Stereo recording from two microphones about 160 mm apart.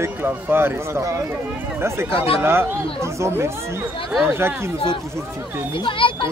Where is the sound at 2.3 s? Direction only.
15° right (ahead or behind).